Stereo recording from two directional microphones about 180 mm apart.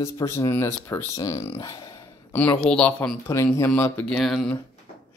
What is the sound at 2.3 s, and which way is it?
Speech, 10° left (ahead or behind).